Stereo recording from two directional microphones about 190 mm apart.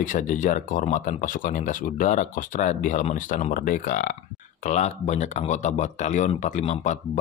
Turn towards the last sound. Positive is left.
turn(degrees=35)  # may be behind; listen again after turning